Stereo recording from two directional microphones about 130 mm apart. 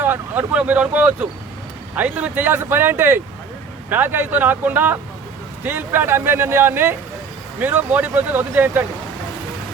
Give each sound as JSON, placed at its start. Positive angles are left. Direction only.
{"t": 0.0, "sound": "speech", "side_deg": -15}